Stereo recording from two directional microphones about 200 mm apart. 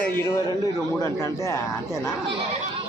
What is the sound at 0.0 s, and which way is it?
A man's voice, 15° left (ahead or behind).